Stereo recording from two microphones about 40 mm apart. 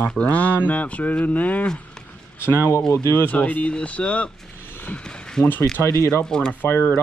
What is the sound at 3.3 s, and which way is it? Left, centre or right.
Speech, left.